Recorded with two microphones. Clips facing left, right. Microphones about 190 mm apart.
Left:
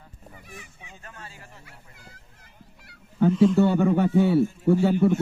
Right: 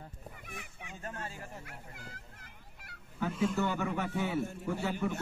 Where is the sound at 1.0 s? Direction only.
45° right (ahead or behind).